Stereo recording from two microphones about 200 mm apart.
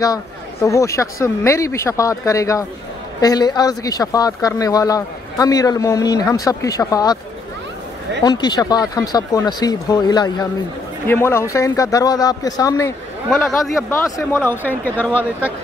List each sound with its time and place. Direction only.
0.0 s speech: 15° left (ahead or behind)
8.2 s speech: 20° left (ahead or behind)
13.3 s speech: centre (ahead or behind)
14.0 s speech: 15° left (ahead or behind)